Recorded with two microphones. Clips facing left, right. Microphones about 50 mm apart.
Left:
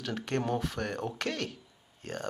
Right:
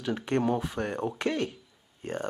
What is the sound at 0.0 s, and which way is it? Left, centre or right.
Speech, centre.